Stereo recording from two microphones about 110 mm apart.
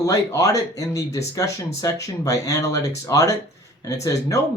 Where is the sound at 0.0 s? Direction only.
30° left (ahead or behind).